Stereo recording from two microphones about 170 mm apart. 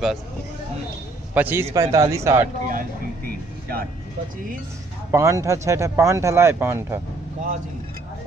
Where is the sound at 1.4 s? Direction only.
10° right (ahead or behind).